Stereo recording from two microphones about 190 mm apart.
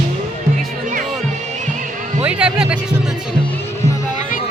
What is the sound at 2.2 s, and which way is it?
Speech, 5° right (ahead or behind).